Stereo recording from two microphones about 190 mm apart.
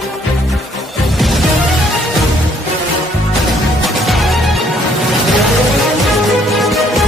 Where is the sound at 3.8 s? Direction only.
Centre (ahead or behind).